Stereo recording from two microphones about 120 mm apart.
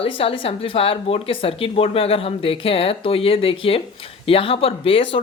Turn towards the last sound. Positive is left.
turn(degrees=50)  # may be behind; listen again after turning